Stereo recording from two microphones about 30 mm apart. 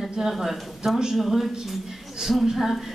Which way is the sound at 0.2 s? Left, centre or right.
Centre.